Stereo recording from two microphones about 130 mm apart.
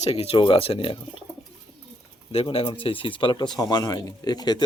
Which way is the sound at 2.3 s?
50° left (ahead or behind).